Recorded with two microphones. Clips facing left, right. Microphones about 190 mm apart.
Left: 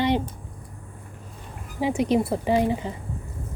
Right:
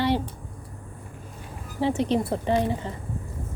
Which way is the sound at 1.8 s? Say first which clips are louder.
Left 2 dB; 10° left (ahead or behind).